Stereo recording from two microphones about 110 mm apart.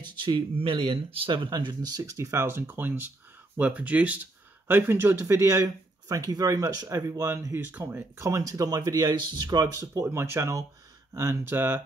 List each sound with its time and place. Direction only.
0.0 s speech: 45° right (ahead or behind)
10.0 s speech: 25° right (ahead or behind)